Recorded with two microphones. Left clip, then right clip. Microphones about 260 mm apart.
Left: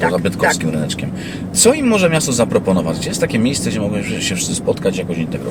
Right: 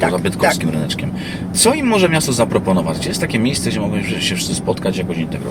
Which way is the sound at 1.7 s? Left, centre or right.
Centre.